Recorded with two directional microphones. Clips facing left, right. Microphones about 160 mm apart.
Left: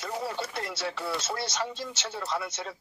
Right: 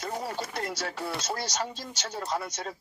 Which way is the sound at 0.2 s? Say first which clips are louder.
Even; 45° right (ahead or behind).